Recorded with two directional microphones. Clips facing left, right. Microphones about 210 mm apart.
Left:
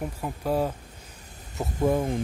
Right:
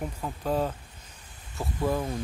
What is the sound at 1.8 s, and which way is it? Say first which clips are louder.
Speech: left 4 dB; 25° left (ahead or behind).